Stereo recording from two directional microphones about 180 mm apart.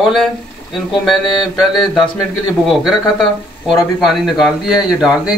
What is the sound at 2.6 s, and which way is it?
Speech, centre (ahead or behind).